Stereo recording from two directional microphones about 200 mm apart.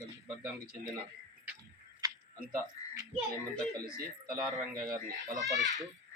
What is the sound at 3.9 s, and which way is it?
Speech, 50° right (ahead or behind).